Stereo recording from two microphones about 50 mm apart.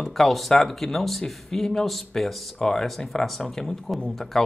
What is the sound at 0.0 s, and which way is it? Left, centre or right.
Speech, centre.